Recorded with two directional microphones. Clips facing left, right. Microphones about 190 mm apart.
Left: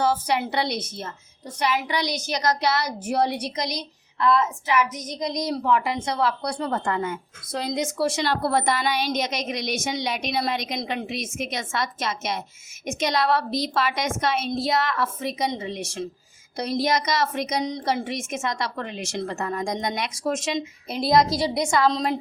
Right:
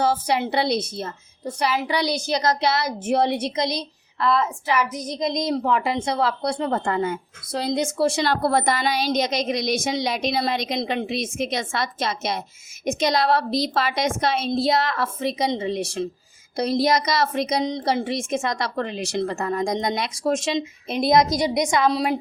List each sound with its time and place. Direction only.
0.0 s a woman's voice: 30° right (ahead or behind)
8.2 s a woman's voice: 40° right (ahead or behind); by 22.2 s 10° right (ahead or behind)